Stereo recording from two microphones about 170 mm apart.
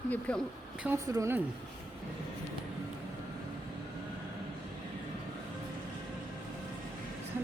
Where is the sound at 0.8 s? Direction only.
15° right (ahead or behind).